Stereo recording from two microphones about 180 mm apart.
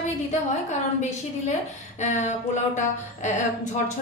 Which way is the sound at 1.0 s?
40° left (ahead or behind).